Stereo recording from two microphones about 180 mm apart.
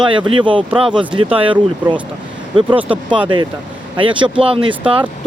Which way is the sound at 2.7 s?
10° right (ahead or behind).